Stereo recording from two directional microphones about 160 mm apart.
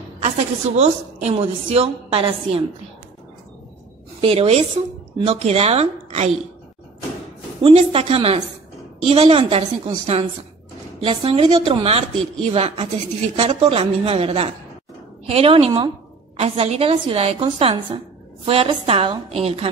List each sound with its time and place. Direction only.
0.2 s a woman's voice: 40° right (ahead or behind)
4.2 s a woman's voice: 35° right (ahead or behind)
7.6 s a woman's voice: 40° right (ahead or behind)
11.0 s a woman's voice: 35° right (ahead or behind)